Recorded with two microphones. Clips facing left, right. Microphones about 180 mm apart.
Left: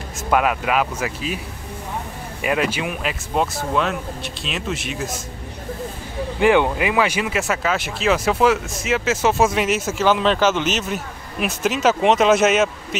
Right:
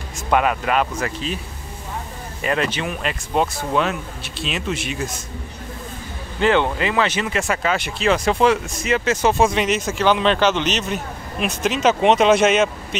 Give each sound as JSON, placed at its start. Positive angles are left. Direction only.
{"t": 0.3, "sound": "speech", "side_deg": 5}
{"t": 2.4, "sound": "speech", "side_deg": 10}
{"t": 6.4, "sound": "speech", "side_deg": 10}